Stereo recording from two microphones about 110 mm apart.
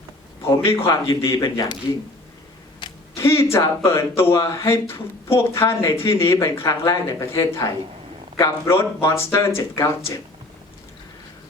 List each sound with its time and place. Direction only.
0.4 s a man's voice: 25° left (ahead or behind)
3.2 s speech: 25° left (ahead or behind)